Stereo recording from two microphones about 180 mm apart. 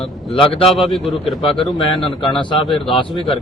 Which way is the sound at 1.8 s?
30° left (ahead or behind).